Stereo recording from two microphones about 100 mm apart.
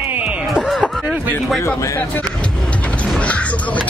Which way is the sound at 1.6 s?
25° left (ahead or behind).